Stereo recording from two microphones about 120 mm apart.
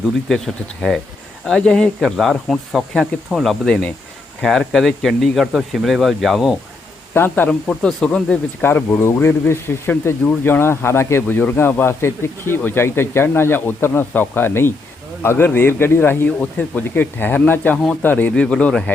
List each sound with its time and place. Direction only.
0.3 s speech: centre (ahead or behind)
7.1 s speech: 15° left (ahead or behind)
8.6 s speech: 20° left (ahead or behind)